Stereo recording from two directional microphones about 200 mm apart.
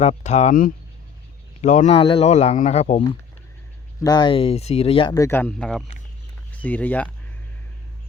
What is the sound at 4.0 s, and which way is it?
Speech, 20° left (ahead or behind).